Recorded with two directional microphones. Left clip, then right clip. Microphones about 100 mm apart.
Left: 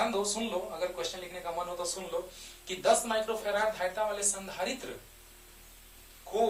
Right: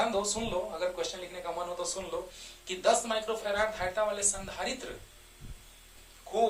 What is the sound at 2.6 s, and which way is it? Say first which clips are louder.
Speech: even; 50° right (ahead or behind).